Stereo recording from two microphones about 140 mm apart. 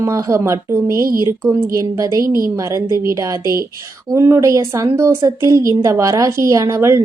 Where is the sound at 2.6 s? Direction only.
20° right (ahead or behind).